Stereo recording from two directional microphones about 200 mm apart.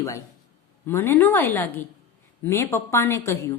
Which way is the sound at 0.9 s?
10° left (ahead or behind).